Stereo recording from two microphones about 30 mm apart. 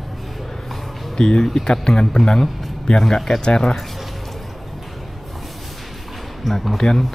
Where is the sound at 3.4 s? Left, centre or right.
Left.